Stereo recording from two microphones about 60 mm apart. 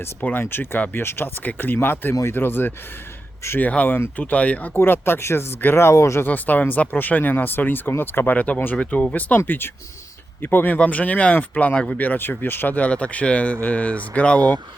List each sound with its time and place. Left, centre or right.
0.2 s speech: left
3.6 s speech: left
3.8 s speech: left
4.2 s speech: left
4.8 s speech: left
6.2 s speech: left
8.7 s speech: left
9.5 s speech: left
10.8 s speech: left